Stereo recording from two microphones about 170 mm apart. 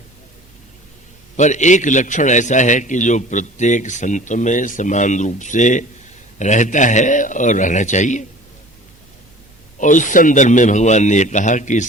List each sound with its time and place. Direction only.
1.4 s a man's voice: 45° left (ahead or behind)
9.7 s a man's voice: 45° left (ahead or behind)